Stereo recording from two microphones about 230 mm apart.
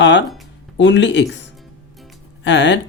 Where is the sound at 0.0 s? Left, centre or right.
Left.